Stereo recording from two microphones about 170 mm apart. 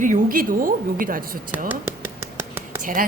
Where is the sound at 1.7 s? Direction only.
15° right (ahead or behind).